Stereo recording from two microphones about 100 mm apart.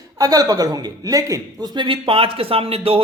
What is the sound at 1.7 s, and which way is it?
Speech, 55° right (ahead or behind).